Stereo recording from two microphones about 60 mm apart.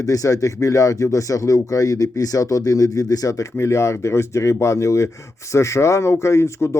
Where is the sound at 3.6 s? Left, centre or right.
Left.